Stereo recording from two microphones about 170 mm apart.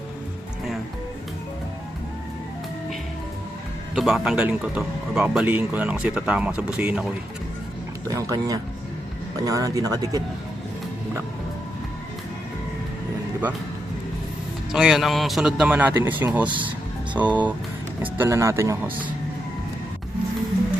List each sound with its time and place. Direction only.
3.9 s speech: centre (ahead or behind)
8.0 s speech: 20° right (ahead or behind)
14.7 s a man's voice: 5° right (ahead or behind)